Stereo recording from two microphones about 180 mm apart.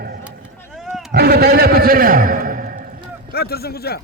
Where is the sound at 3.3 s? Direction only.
60° left (ahead or behind).